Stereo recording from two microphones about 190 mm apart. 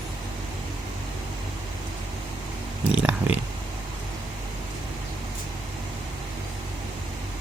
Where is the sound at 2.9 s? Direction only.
5° right (ahead or behind).